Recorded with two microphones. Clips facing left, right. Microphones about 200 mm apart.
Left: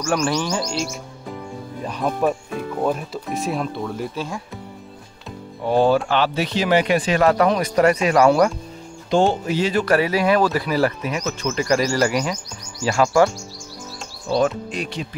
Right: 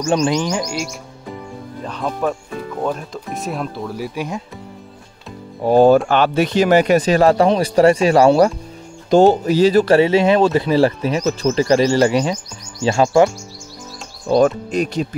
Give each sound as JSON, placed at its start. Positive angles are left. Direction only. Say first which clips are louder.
{"t": 0.0, "sound": "speech", "louder": "right 4 dB", "side_deg": -25}
{"t": 0.3, "sound": "speech", "louder": "right 3 dB", "side_deg": -15}
{"t": 1.8, "sound": "speech", "louder": "left 1 dB", "side_deg": 10}
{"t": 5.6, "sound": "speech", "louder": "right 6 dB", "side_deg": -45}
{"t": 14.7, "sound": "speech", "louder": "right 8 dB", "side_deg": -40}